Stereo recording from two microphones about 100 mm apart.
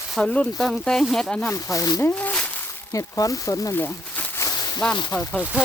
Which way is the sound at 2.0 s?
20° left (ahead or behind).